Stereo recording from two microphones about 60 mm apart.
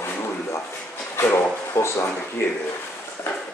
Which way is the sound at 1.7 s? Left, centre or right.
Left.